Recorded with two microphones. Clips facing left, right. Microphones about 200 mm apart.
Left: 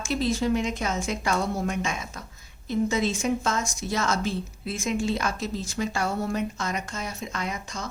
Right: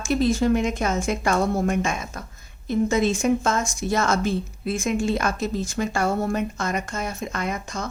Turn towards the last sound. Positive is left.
turn(degrees=-50)  # may be behind; listen again after turning